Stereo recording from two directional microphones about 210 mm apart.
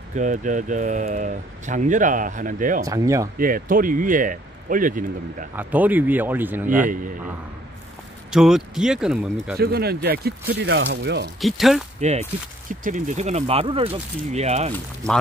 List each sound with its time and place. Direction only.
0.1 s speech: 35° right (ahead or behind)
2.8 s speech: 15° right (ahead or behind)
3.3 s speech: 40° right (ahead or behind)
5.6 s speech: 10° right (ahead or behind)
8.3 s speech: centre (ahead or behind)
9.6 s speech: 50° right (ahead or behind)
11.4 s speech: centre (ahead or behind)
12.0 s speech: 30° right (ahead or behind)